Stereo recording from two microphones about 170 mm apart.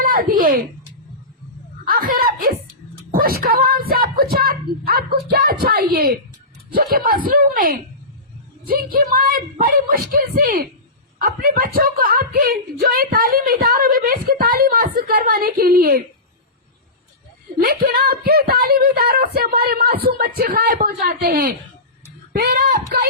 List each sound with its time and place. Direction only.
0.0 s a woman's voice: 60° right (ahead or behind)
1.9 s a woman's voice: 55° right (ahead or behind)
17.6 s a woman's voice: 65° right (ahead or behind)